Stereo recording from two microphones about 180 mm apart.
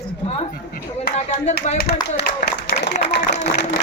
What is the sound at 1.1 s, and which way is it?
Speech, 40° left (ahead or behind).